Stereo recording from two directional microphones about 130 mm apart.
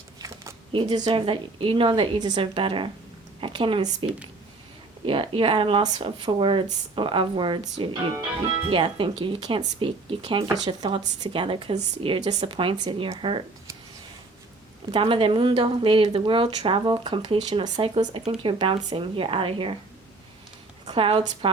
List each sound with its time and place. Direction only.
0.7 s speech: 40° right (ahead or behind)
10.4 s speech: 30° right (ahead or behind)
14.9 s speech: 45° right (ahead or behind)
17.4 s speech: 35° right (ahead or behind)
20.8 s speech: 40° right (ahead or behind)